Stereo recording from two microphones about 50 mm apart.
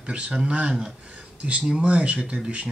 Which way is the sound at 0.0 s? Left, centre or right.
Right.